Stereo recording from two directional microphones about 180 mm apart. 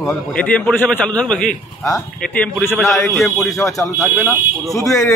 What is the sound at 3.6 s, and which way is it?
Speech, 20° left (ahead or behind).